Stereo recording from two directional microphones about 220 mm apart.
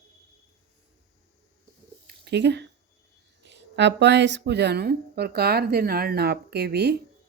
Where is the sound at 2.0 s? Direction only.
50° right (ahead or behind).